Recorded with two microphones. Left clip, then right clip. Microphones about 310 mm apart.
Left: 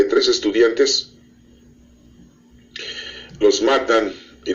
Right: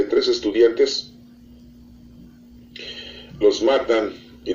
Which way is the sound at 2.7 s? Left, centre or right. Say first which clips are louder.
Left 4 dB; left.